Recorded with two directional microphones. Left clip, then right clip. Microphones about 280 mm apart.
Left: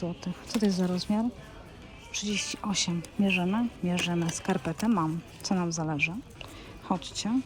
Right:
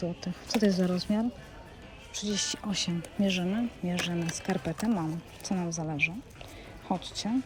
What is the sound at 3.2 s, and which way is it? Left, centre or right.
Speech, left.